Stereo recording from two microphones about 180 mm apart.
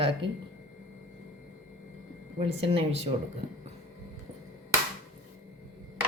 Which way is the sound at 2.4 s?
35° right (ahead or behind).